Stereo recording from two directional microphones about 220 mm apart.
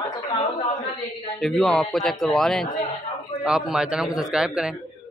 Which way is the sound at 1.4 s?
Centre (ahead or behind).